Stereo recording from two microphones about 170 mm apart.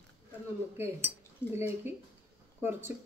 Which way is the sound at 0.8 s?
15° right (ahead or behind).